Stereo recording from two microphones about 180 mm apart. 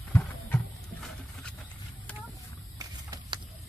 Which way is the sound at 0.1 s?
5° left (ahead or behind).